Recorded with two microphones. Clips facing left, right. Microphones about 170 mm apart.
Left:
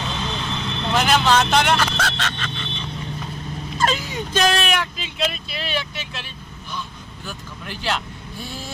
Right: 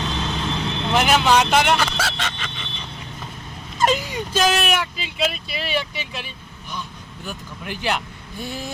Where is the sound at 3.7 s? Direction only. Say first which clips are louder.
Right 3 dB; 15° right (ahead or behind).